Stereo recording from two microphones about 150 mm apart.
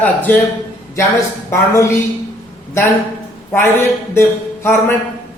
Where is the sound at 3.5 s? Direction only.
15° left (ahead or behind).